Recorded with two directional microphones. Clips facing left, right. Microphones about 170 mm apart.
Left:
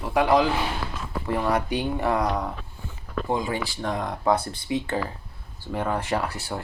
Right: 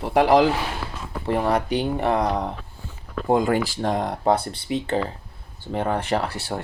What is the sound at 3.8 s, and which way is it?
Speech, 35° right (ahead or behind).